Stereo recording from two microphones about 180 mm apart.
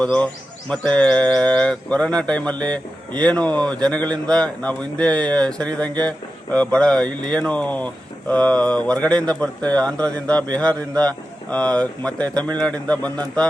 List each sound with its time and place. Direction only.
0.0 s speech: 5° left (ahead or behind)